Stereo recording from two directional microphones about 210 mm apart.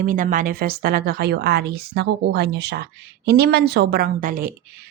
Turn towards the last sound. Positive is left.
turn(degrees=-40)  # may be behind; listen again after turning